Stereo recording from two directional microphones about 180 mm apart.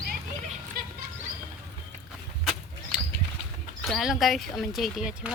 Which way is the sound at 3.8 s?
Centre (ahead or behind).